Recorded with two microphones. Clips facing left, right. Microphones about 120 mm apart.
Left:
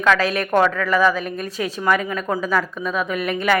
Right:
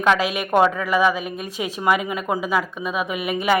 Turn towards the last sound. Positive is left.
turn(degrees=-15)  # may be behind; listen again after turning